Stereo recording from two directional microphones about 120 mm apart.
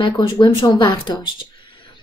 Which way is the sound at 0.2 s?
40° left (ahead or behind).